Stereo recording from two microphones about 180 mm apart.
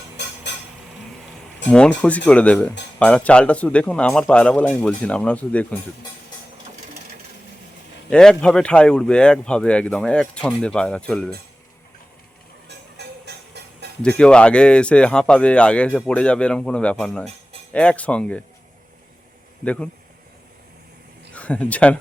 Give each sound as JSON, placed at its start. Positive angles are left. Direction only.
{"t": 0.2, "sound": "a sound", "side_deg": 70}
{"t": 1.7, "sound": "speech", "side_deg": 5}
{"t": 8.1, "sound": "speech", "side_deg": 5}
{"t": 12.6, "sound": "music", "side_deg": -70}
{"t": 14.0, "sound": "speech", "side_deg": 5}
{"t": 19.6, "sound": "speech", "side_deg": 5}
{"t": 21.3, "sound": "speech", "side_deg": 5}